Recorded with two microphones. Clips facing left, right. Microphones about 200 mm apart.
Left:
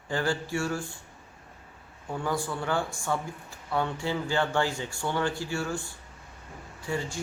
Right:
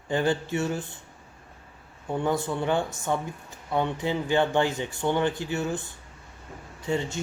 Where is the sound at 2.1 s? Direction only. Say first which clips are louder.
Right 4 dB; 25° right (ahead or behind).